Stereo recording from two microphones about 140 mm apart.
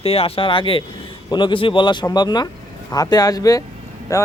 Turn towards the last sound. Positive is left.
turn(degrees=25)  # may be behind; listen again after turning